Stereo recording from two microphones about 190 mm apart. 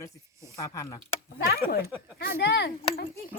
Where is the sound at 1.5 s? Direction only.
55° left (ahead or behind).